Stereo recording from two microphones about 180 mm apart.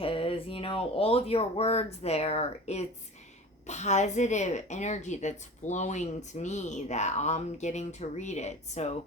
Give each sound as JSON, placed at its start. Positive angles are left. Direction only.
{"t": 0.0, "sound": "a woman's voice", "side_deg": 30}